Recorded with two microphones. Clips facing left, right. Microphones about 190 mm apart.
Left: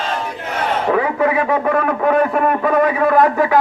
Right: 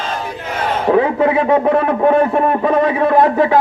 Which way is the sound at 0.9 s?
25° right (ahead or behind).